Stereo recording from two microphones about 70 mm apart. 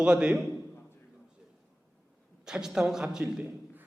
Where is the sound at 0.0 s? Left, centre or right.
Centre.